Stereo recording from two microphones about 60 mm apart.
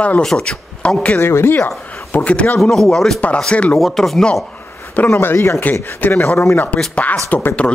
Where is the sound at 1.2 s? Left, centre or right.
Left.